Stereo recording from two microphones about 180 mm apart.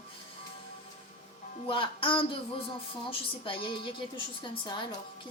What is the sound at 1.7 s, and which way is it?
Music, 30° left (ahead or behind).